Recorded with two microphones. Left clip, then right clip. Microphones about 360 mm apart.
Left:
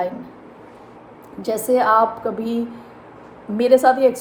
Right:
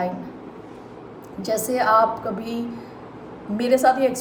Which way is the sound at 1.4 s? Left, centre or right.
Centre.